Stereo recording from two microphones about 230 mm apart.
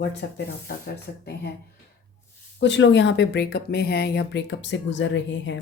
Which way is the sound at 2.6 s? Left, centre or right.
Left.